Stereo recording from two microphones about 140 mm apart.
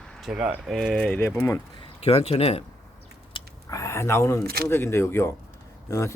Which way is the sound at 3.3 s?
35° left (ahead or behind).